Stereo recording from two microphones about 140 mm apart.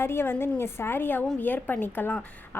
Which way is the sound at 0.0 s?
15° left (ahead or behind).